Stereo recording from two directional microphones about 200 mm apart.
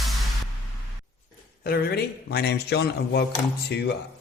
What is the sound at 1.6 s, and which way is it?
Speech, 50° left (ahead or behind).